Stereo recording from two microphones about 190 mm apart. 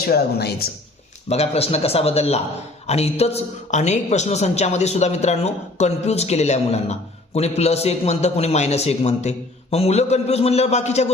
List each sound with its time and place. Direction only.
0.1 s speech: 60° left (ahead or behind)
1.3 s a woman's voice: 35° left (ahead or behind)